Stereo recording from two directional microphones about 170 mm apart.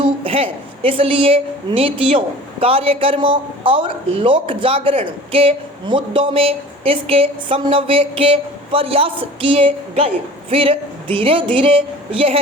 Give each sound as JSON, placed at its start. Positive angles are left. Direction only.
{"t": 0.0, "sound": "a woman's voice", "side_deg": -35}